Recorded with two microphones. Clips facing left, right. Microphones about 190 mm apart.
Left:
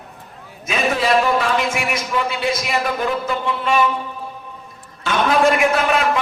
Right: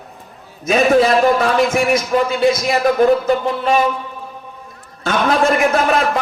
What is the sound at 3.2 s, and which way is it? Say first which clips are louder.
Speech: right 5 dB; 40° right (ahead or behind).